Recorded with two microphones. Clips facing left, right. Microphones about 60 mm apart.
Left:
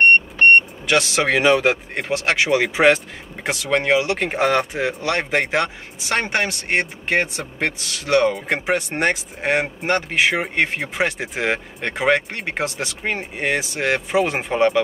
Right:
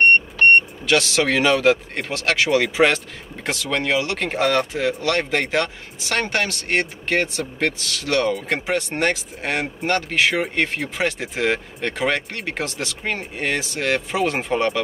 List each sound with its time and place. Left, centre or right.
0.4 s speech: left